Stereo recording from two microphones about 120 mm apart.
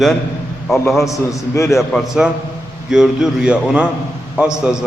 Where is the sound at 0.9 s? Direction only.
25° left (ahead or behind).